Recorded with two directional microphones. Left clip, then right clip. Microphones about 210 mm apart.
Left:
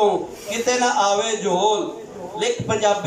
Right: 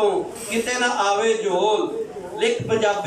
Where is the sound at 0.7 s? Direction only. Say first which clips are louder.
Left 3 dB; 25° left (ahead or behind).